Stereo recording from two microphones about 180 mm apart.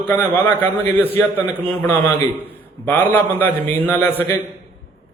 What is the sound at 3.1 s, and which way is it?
A man's voice, 10° left (ahead or behind).